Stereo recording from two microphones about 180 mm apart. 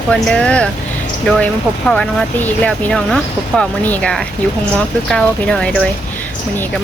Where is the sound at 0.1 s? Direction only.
5° left (ahead or behind).